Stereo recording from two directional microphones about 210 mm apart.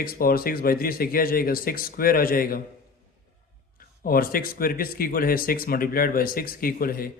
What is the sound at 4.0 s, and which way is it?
Speech, 45° left (ahead or behind).